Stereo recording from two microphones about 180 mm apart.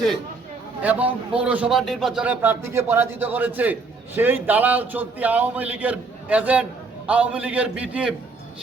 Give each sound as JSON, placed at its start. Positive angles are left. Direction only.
{"t": 0.8, "sound": "a man's voice", "side_deg": -10}